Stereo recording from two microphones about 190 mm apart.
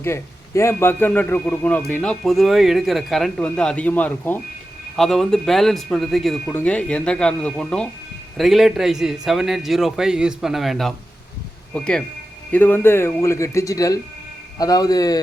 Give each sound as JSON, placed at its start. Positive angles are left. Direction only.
{"t": 0.0, "sound": "a man's voice", "side_deg": 15}